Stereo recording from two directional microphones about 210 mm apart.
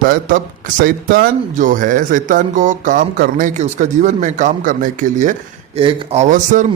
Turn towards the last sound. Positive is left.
turn(degrees=-35)  # may be behind; listen again after turning